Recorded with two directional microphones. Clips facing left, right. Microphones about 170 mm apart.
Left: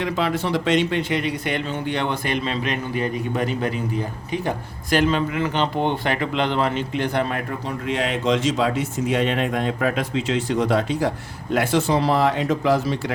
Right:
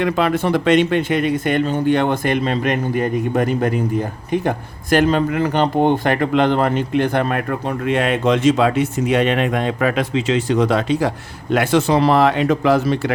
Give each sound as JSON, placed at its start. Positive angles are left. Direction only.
{"t": 0.0, "sound": "speech", "side_deg": -55}
{"t": 11.5, "sound": "speech", "side_deg": -75}